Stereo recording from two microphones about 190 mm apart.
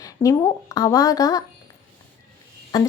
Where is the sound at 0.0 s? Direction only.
15° left (ahead or behind).